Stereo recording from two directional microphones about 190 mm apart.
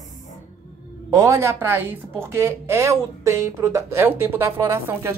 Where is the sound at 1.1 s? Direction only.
15° right (ahead or behind).